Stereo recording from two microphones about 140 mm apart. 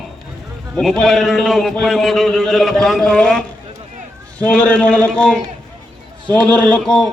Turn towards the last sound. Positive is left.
turn(degrees=5)  # may be behind; listen again after turning